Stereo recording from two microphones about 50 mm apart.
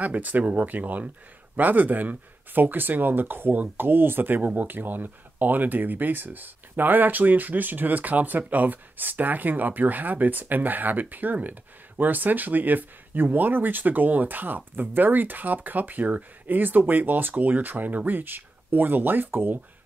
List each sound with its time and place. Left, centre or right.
0.0 s speech: right